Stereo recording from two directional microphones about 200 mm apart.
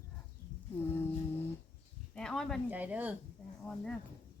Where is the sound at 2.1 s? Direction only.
5° left (ahead or behind).